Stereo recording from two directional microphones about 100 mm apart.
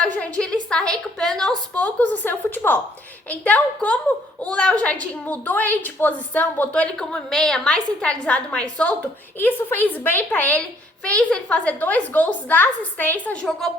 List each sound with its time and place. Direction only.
0.0 s a woman's voice: 10° left (ahead or behind)